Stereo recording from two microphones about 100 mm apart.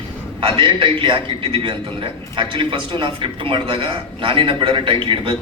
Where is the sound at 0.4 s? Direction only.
55° right (ahead or behind).